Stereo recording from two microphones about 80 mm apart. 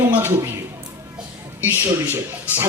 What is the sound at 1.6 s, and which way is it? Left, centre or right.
A man's voice, right.